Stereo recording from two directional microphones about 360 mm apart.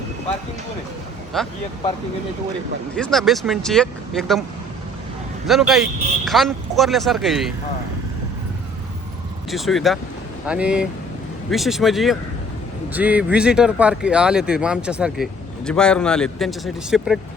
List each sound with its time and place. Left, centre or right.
1.3 s speech: centre
2.9 s speech: centre
5.5 s speech: centre
9.5 s speech: centre